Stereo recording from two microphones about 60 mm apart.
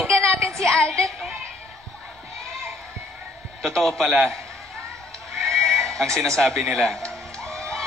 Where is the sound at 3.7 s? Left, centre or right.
Centre.